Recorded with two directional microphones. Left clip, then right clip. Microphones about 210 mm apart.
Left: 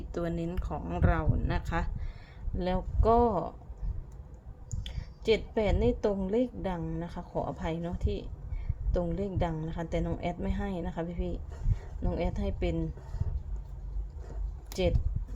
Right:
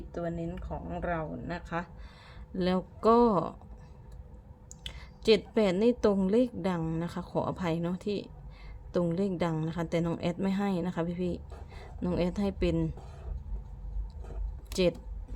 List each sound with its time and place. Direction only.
0.1 s speech: 15° left (ahead or behind)
2.6 s a woman's voice: 25° right (ahead or behind)
4.7 s a woman's voice: 25° right (ahead or behind)
14.7 s speech: 25° right (ahead or behind)